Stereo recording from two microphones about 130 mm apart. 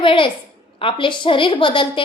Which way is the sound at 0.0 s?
40° left (ahead or behind).